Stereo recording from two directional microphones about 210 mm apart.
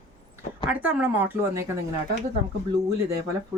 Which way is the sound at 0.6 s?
10° right (ahead or behind).